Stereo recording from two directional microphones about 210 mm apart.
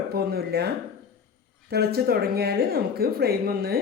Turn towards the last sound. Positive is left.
turn(degrees=-45)  # may be behind; listen again after turning